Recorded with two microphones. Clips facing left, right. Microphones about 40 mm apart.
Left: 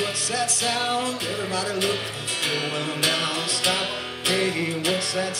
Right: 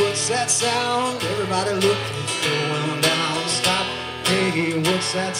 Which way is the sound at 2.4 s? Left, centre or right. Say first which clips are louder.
Right 4 dB; centre.